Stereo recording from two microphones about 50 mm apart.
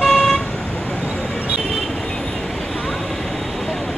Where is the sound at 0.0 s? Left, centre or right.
Centre.